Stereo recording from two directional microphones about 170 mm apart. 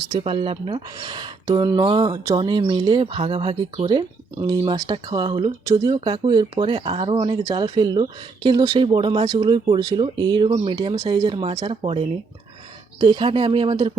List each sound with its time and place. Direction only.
0.0 s speech: 35° right (ahead or behind)